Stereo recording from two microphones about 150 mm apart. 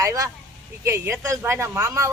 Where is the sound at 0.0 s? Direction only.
20° right (ahead or behind).